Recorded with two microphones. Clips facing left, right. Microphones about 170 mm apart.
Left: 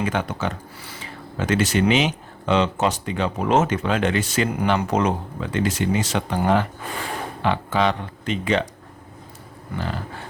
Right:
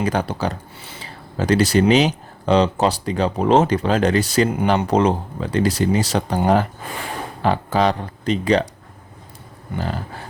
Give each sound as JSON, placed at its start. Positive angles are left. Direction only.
{"t": 0.0, "sound": "speech", "side_deg": -35}
{"t": 9.7, "sound": "speech", "side_deg": -40}